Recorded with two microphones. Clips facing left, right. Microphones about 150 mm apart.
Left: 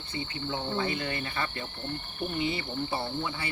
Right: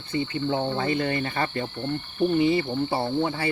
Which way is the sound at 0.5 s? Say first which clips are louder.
Right 5 dB; 45° right (ahead or behind).